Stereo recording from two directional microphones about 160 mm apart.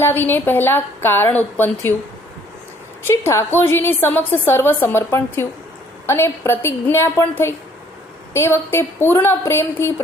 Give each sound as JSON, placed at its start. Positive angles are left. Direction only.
{"t": 0.0, "sound": "a woman's voice", "side_deg": 10}
{"t": 3.0, "sound": "a woman's voice", "side_deg": 15}